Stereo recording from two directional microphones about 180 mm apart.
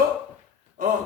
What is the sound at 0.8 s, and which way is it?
Speech, 45° right (ahead or behind).